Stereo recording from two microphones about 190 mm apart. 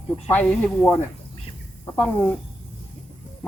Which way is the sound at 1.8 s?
10° left (ahead or behind).